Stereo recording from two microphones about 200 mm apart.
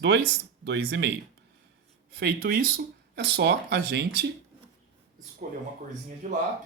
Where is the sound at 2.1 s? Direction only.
45° right (ahead or behind).